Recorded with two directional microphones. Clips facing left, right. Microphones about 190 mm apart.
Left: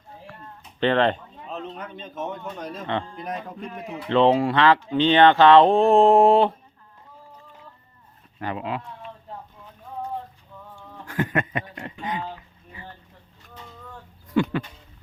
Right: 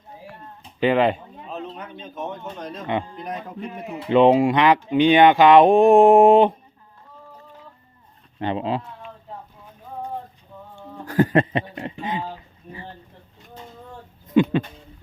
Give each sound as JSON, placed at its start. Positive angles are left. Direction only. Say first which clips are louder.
{"t": 0.8, "sound": "speech", "louder": "right 2 dB", "side_deg": -10}
{"t": 1.5, "sound": "a sound", "louder": "right 1 dB", "side_deg": -5}
{"t": 2.6, "sound": "speech", "louder": "even", "side_deg": 5}
{"t": 2.8, "sound": "speech", "louder": "right 3 dB", "side_deg": -15}
{"t": 3.2, "sound": "speech", "louder": "right 1 dB", "side_deg": 0}
{"t": 4.0, "sound": "speech", "louder": "right 4 dB", "side_deg": -15}
{"t": 8.4, "sound": "speech", "louder": "right 5 dB", "side_deg": -25}
{"t": 11.0, "sound": "speech", "louder": "right 7 dB", "side_deg": -35}
{"t": 14.3, "sound": "a sound", "louder": "right 5 dB", "side_deg": -20}